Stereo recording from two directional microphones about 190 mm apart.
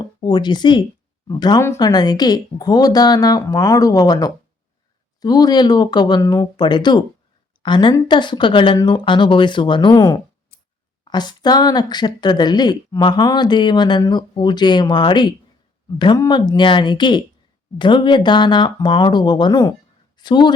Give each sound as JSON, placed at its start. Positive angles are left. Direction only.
{"t": 0.2, "sound": "a woman's voice", "side_deg": 25}